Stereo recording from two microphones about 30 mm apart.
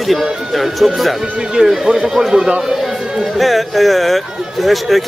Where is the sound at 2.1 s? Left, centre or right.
Centre.